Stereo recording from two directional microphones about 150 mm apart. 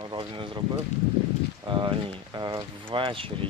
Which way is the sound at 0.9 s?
50° left (ahead or behind).